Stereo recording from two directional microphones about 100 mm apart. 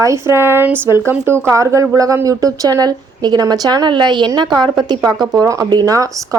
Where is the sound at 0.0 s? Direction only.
30° right (ahead or behind).